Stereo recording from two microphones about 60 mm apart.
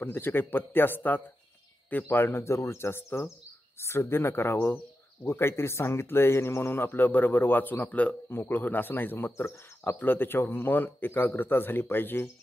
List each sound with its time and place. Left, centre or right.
0.0 s speech: left
8.3 s speech: left